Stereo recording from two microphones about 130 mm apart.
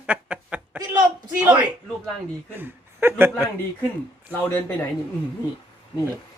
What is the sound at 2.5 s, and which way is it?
Speech, 15° right (ahead or behind).